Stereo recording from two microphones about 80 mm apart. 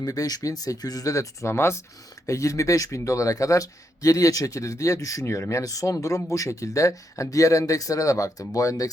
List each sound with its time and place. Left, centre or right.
0.0 s speech: left